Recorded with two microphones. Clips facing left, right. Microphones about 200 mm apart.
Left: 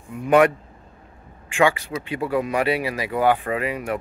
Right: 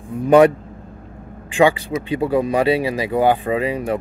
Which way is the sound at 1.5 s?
30° right (ahead or behind).